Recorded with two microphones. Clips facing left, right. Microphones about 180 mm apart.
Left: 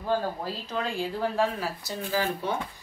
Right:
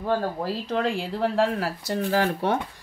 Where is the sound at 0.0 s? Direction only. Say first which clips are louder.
Right 3 dB; 70° right (ahead or behind).